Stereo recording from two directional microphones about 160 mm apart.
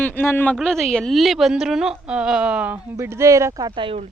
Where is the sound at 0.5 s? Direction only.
Centre (ahead or behind).